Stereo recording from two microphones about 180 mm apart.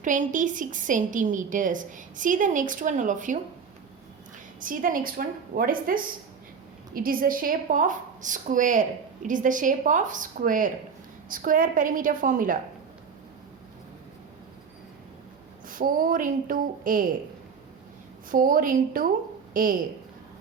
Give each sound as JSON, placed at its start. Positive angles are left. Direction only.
{"t": 0.0, "sound": "a woman's voice", "side_deg": -45}
{"t": 4.6, "sound": "a woman's voice", "side_deg": -50}
{"t": 15.6, "sound": "a woman's voice", "side_deg": -50}
{"t": 18.3, "sound": "a woman's voice", "side_deg": -50}